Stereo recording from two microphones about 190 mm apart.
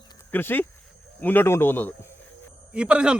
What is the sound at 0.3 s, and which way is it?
A man's voice, 10° left (ahead or behind).